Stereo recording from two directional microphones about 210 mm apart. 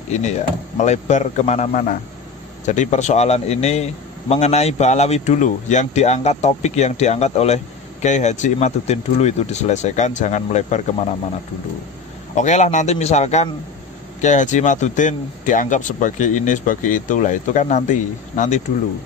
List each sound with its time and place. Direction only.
0.1 s speech: 35° left (ahead or behind)
12.4 s speech: 35° left (ahead or behind)